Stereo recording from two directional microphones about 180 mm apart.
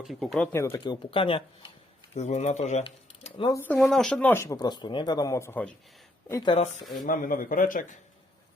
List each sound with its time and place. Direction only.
0.0 s speech: centre (ahead or behind); by 0.9 s 15° left (ahead or behind)
1.1 s speech: 30° left (ahead or behind)
3.2 s a sound: 30° left (ahead or behind)
3.5 s speech: 10° left (ahead or behind)
6.4 s speech: 30° left (ahead or behind)
7.0 s a man's voice: 50° left (ahead or behind)